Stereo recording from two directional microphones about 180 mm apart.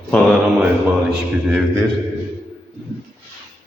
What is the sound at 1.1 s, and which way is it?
Speech, 5° right (ahead or behind).